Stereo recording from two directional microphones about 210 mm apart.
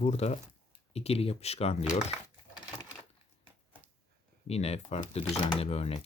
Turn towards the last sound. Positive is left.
turn(degrees=30)  # may be behind; listen again after turning